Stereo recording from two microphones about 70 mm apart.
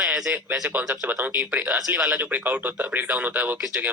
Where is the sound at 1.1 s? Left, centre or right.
Right.